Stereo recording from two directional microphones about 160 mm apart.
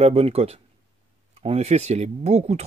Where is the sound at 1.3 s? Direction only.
40° right (ahead or behind).